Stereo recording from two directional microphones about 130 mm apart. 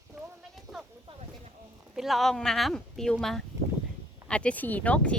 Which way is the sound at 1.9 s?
Centre (ahead or behind).